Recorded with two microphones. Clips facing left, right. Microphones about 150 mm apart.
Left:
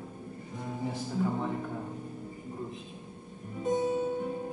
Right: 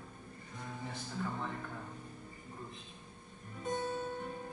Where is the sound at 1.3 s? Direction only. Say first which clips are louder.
Left 8 dB; 15° left (ahead or behind).